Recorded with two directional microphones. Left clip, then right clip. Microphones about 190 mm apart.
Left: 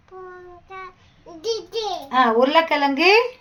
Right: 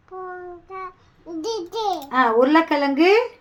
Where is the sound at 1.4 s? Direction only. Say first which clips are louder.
Even; 25° right (ahead or behind).